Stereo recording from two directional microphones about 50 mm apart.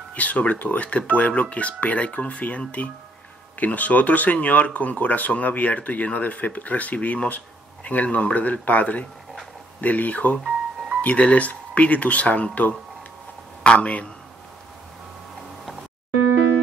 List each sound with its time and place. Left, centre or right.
0.1 s speech: left
13.7 s speech: left